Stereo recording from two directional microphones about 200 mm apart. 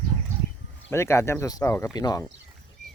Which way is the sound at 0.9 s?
15° left (ahead or behind).